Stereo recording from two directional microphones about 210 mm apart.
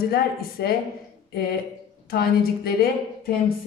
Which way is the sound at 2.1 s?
45° left (ahead or behind).